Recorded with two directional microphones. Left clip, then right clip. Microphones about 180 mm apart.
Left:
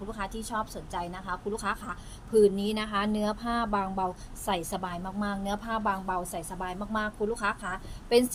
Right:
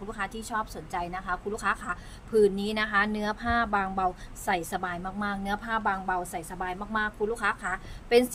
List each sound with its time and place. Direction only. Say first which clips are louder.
0.1 s a woman's voice: right 2 dB; 20° right (ahead or behind)